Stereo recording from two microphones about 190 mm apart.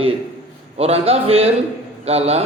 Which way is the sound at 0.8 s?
30° right (ahead or behind).